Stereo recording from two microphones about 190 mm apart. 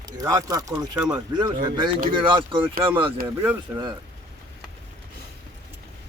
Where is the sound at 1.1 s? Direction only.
20° right (ahead or behind).